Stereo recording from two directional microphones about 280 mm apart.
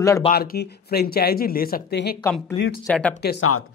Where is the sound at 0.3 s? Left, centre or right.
Left.